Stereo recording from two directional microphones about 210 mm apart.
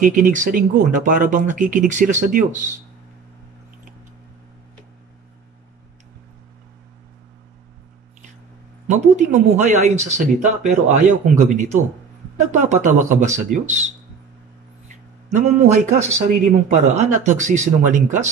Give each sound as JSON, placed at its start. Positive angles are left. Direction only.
{"t": 0.0, "sound": "speech", "side_deg": -40}
{"t": 8.8, "sound": "speech", "side_deg": -35}
{"t": 15.3, "sound": "speech", "side_deg": -35}